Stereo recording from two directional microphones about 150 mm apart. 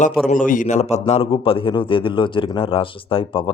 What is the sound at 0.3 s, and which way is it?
A man's voice, 65° left (ahead or behind).